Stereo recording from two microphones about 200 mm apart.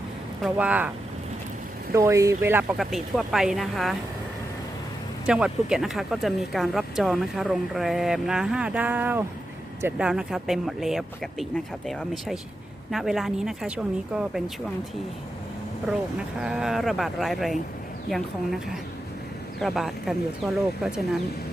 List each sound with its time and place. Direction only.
0.4 s speech: 5° right (ahead or behind)
1.9 s speech: 15° right (ahead or behind)
5.2 s speech: 5° right (ahead or behind)
16.4 s speech: 5° right (ahead or behind)
19.5 s speech: centre (ahead or behind)